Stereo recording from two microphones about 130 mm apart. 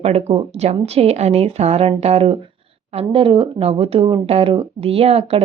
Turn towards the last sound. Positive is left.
turn(degrees=-50)  # may be behind; listen again after turning